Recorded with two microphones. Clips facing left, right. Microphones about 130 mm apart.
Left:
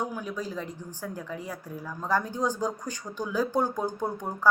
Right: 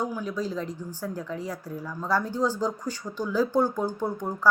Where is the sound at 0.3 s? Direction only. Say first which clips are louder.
Right 4 dB; 10° left (ahead or behind).